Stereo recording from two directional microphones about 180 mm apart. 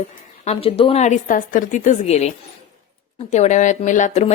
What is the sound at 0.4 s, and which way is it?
A woman's voice, 30° left (ahead or behind).